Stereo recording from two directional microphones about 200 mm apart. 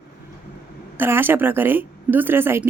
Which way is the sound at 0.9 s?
10° right (ahead or behind).